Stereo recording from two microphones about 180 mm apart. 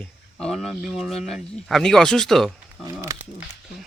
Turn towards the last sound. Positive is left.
turn(degrees=-20)  # may be behind; listen again after turning